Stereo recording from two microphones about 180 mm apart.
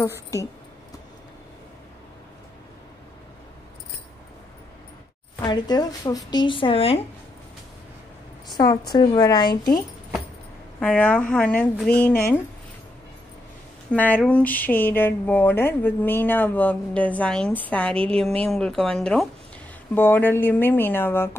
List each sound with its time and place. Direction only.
0.0 s speech: 15° left (ahead or behind)
5.4 s speech: 20° left (ahead or behind)
8.5 s speech: 20° left (ahead or behind)
10.8 s speech: 5° left (ahead or behind)
13.9 s speech: 10° left (ahead or behind)